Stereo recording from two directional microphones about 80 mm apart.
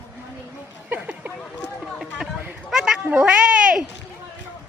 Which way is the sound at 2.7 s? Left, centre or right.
Centre.